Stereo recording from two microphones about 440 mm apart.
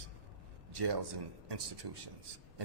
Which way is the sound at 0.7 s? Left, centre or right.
Right.